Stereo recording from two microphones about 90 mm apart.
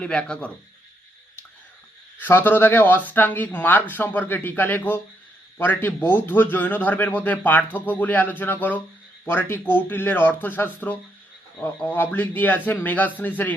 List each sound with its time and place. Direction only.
0.0 s speech: 10° left (ahead or behind)
2.1 s a man's voice: 25° left (ahead or behind)